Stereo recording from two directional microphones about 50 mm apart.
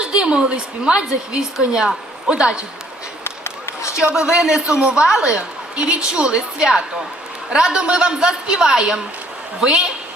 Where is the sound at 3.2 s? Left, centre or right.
Left.